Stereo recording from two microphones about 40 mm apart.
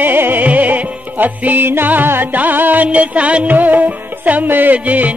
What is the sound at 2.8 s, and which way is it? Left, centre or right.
Music, right.